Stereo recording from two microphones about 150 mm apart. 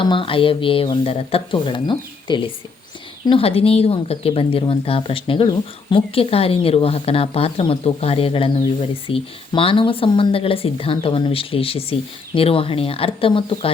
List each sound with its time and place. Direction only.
0.0 s speech: 35° left (ahead or behind)